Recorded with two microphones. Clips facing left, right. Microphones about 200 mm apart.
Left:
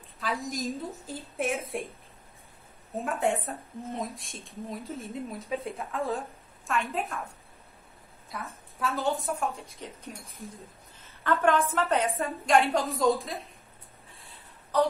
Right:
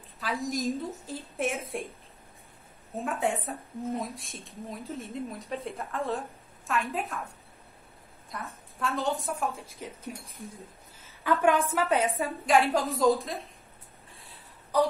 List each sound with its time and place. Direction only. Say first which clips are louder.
0.2 s speech: right 2 dB; centre (ahead or behind)
3.0 s speech: left 1 dB; centre (ahead or behind)
8.3 s speech: even; centre (ahead or behind)
11.4 s a woman's voice: even; 10° right (ahead or behind)
14.1 s a sound: right 1 dB; centre (ahead or behind)